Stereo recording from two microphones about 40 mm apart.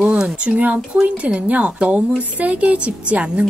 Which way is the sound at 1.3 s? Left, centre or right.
Right.